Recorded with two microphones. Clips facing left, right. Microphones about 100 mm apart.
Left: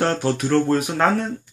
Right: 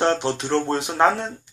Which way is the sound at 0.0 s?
20° right (ahead or behind).